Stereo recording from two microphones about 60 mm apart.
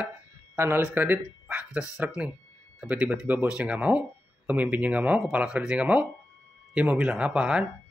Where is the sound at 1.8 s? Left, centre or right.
Left.